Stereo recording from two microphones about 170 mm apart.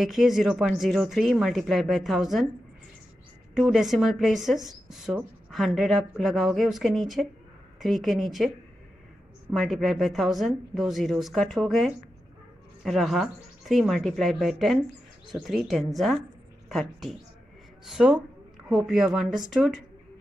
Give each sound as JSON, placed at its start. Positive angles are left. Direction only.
{"t": 0.0, "sound": "speech", "side_deg": 0}
{"t": 3.5, "sound": "speech", "side_deg": 0}
{"t": 9.5, "sound": "a woman's voice", "side_deg": 0}